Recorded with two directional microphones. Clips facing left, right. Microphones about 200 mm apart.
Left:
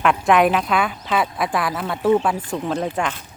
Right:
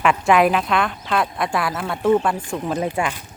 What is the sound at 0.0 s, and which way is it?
Speech, centre (ahead or behind).